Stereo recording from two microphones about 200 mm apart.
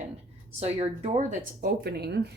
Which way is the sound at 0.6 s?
30° right (ahead or behind).